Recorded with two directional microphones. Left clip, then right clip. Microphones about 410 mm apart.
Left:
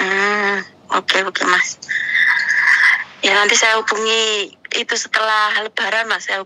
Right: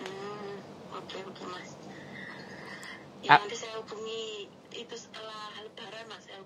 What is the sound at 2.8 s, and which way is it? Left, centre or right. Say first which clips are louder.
Speech: left 18 dB; left.